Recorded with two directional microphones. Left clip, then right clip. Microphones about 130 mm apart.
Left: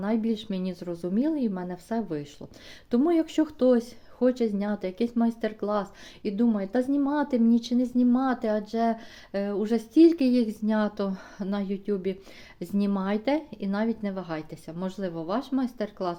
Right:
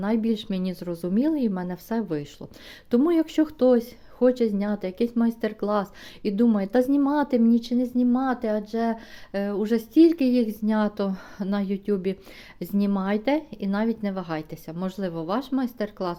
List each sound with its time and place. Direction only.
0.0 s a woman's voice: 30° right (ahead or behind)
12.5 s speech: 20° right (ahead or behind)